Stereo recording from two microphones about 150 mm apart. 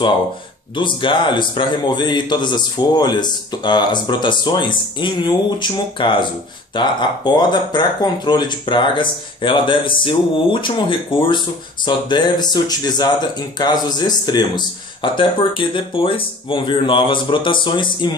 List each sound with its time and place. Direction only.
0.7 s speech: 35° left (ahead or behind)